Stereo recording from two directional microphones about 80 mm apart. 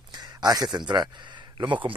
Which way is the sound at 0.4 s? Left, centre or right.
Right.